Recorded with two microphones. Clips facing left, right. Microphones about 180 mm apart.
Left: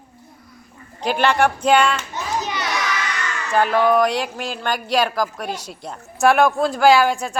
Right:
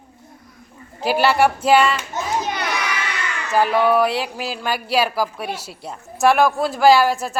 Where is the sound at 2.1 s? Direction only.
50° right (ahead or behind).